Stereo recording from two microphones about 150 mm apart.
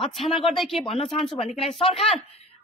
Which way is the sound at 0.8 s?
40° left (ahead or behind).